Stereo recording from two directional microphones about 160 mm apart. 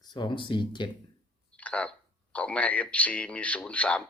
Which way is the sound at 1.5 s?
10° left (ahead or behind).